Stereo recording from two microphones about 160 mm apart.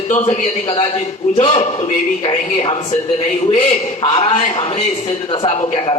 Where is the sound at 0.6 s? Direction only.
35° left (ahead or behind).